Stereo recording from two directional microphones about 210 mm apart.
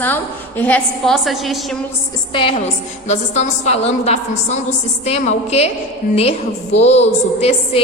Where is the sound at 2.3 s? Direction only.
25° left (ahead or behind).